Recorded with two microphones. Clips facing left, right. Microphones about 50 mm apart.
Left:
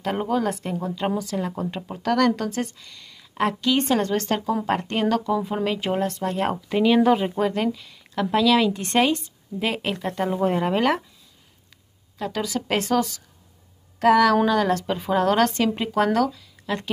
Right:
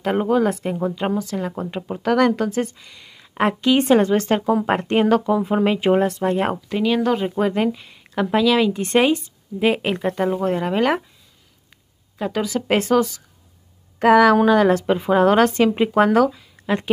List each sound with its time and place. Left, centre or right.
0.0 s a woman's voice: centre
6.7 s speech: centre
7.3 s speech: centre
10.0 s speech: centre
12.2 s speech: centre
13.9 s a woman's voice: right